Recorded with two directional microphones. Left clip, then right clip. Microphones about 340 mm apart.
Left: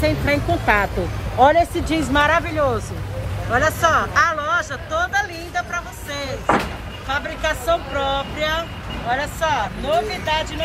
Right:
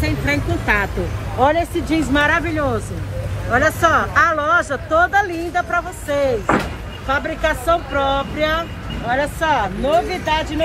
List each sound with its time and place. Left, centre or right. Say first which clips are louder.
0.0 s speech: left 1 dB; left
1.9 s speech: right 1 dB; centre